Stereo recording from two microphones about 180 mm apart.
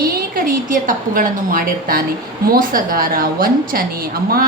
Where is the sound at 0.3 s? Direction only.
50° right (ahead or behind).